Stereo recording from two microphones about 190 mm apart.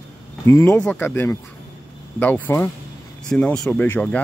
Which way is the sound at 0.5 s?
15° left (ahead or behind).